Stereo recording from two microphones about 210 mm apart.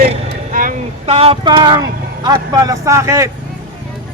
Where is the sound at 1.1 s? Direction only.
25° right (ahead or behind).